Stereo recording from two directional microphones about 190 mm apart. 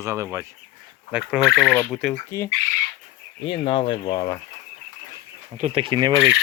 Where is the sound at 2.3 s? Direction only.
15° left (ahead or behind).